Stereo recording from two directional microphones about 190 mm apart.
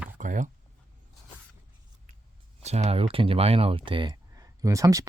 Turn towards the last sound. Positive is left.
turn(degrees=-15)  # may be behind; listen again after turning